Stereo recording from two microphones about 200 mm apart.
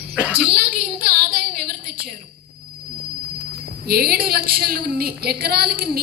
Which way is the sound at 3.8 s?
50° right (ahead or behind).